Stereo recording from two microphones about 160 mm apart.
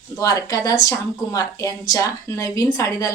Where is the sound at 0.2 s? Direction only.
20° left (ahead or behind).